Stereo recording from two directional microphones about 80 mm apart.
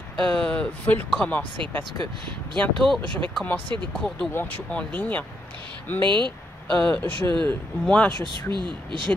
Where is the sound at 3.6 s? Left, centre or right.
Right.